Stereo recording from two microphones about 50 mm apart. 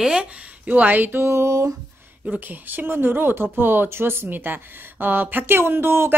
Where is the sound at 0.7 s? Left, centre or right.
Right.